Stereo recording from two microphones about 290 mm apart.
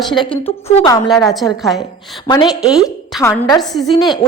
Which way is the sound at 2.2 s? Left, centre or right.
Centre.